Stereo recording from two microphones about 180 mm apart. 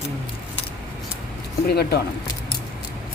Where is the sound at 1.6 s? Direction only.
60° left (ahead or behind).